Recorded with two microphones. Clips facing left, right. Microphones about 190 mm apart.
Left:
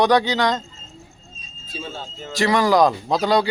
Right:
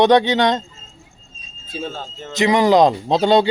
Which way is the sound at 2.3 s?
20° right (ahead or behind).